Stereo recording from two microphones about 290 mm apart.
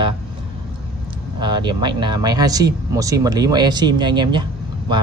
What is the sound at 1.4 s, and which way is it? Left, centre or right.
Speech, centre.